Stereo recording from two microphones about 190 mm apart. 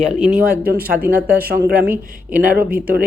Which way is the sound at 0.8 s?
10° right (ahead or behind).